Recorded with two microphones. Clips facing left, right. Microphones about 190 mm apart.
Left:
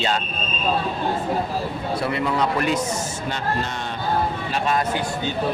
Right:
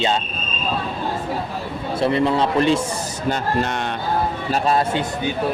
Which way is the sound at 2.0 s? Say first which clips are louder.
Right 6 dB; 30° right (ahead or behind).